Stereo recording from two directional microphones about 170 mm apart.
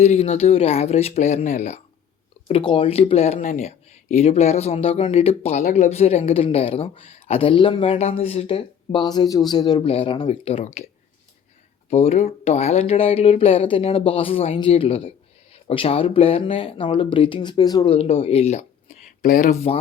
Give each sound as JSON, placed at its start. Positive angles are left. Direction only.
{"t": 0.0, "sound": "speech", "side_deg": 40}
{"t": 2.5, "sound": "speech", "side_deg": 30}
{"t": 11.9, "sound": "speech", "side_deg": 40}
{"t": 17.9, "sound": "speech", "side_deg": 35}